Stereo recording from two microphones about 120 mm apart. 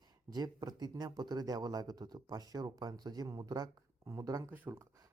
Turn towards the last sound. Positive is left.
turn(degrees=-20)  # may be behind; listen again after turning